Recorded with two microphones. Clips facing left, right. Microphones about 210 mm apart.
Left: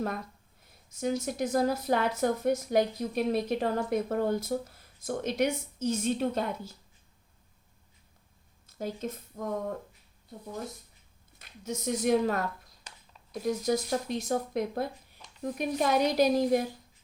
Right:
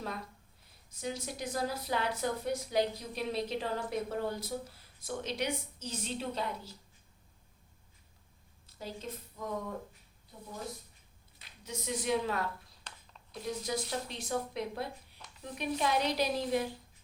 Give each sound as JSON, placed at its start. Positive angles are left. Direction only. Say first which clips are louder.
{"t": 0.9, "sound": "speech", "louder": "left 9 dB", "side_deg": 45}
{"t": 8.8, "sound": "speech", "louder": "left 7 dB", "side_deg": 50}
{"t": 11.3, "sound": "a woman's voice", "louder": "left 7 dB", "side_deg": 45}